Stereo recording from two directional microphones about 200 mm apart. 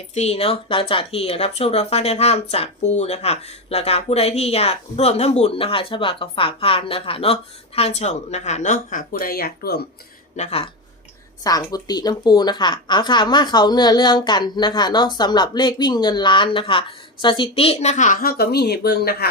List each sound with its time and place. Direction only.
0.1 s speech: 30° left (ahead or behind); by 9.8 s 50° left (ahead or behind)
10.3 s speech: 30° left (ahead or behind)
11.4 s a woman's voice: 20° left (ahead or behind); by 19.3 s 50° left (ahead or behind)